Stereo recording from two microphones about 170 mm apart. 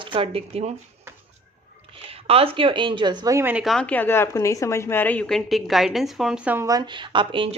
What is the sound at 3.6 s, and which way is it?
A woman's voice, 5° left (ahead or behind).